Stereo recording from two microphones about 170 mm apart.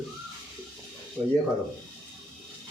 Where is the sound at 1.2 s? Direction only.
15° right (ahead or behind).